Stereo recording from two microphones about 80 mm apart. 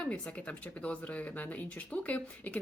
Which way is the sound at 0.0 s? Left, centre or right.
Centre.